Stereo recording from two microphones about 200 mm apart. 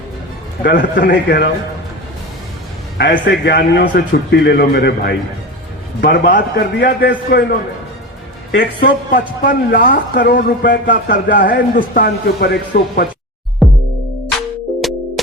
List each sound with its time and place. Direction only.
0.6 s a man's voice: 60° left (ahead or behind)
3.0 s speech: 60° left (ahead or behind)
8.5 s speech: 55° left (ahead or behind)
13.6 s music: centre (ahead or behind)
14.8 s music: centre (ahead or behind)